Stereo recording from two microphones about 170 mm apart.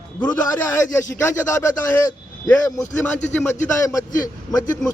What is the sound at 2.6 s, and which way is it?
A man's voice, 20° left (ahead or behind).